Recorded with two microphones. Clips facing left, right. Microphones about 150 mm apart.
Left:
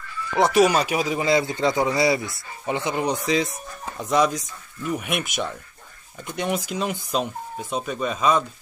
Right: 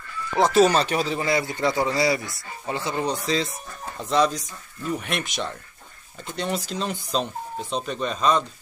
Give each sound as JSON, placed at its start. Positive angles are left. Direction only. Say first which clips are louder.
{"t": 0.4, "sound": "speech", "louder": "even", "side_deg": 15}